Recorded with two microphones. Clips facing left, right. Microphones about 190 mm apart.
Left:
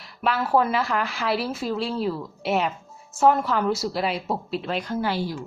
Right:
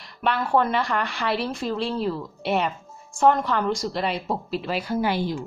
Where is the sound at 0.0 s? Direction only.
5° left (ahead or behind).